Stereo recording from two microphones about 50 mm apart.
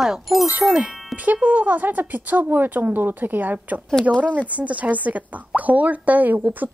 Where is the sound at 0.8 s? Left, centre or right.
Right.